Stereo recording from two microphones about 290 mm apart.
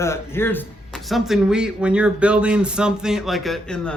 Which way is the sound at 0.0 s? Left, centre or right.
Centre.